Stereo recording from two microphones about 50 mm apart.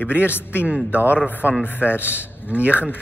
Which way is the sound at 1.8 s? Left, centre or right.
Right.